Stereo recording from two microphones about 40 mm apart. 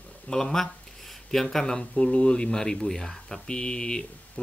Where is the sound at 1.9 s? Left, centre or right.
Left.